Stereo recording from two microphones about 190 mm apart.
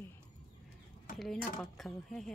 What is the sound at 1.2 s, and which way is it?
Speech, centre (ahead or behind).